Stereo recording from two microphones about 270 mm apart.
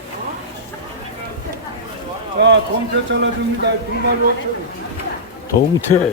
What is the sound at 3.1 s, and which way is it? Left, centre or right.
Speech, right.